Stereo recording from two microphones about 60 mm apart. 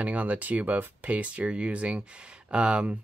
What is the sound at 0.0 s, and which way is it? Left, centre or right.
Speech, right.